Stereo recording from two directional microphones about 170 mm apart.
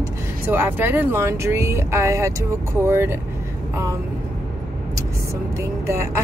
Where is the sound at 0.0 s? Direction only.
10° right (ahead or behind).